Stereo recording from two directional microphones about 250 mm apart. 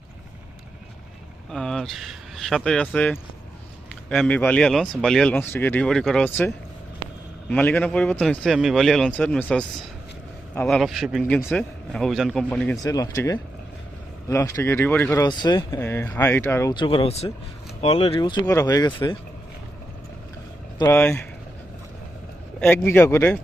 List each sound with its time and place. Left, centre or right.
1.5 s speech: centre
7.5 s speech: centre
20.7 s speech: centre
22.6 s speech: centre